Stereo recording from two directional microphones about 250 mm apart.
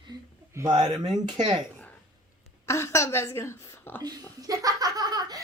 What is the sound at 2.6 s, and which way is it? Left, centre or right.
Speech, centre.